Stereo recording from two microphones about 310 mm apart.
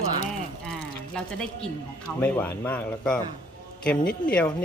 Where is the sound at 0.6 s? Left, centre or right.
Centre.